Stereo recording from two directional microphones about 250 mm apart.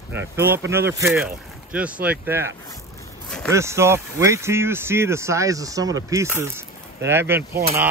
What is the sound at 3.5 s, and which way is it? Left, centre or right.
Speech, centre.